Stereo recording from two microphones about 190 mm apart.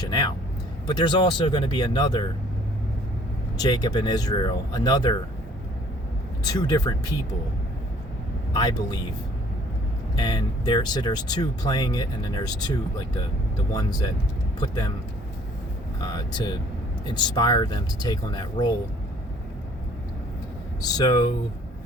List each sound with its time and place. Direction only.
0.1 s speech: 20° left (ahead or behind)
3.6 s speech: 20° left (ahead or behind)
6.5 s speech: 20° left (ahead or behind)
8.5 s speech: 20° left (ahead or behind)
10.2 s speech: 20° left (ahead or behind)
16.0 s speech: 25° left (ahead or behind)
20.8 s speech: 20° left (ahead or behind)